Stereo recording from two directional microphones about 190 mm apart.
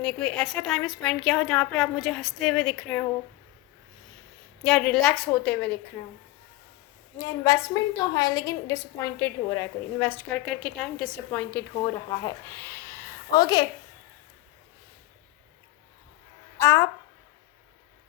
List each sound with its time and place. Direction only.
0.0 s a woman's voice: 5° left (ahead or behind)
4.6 s a woman's voice: 5° left (ahead or behind)
7.2 s a woman's voice: 15° left (ahead or behind)
13.3 s a woman's voice: 20° left (ahead or behind)
16.6 s a woman's voice: 15° left (ahead or behind)